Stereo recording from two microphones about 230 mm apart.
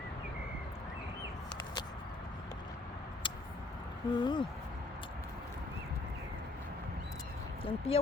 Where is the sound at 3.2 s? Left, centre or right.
Left.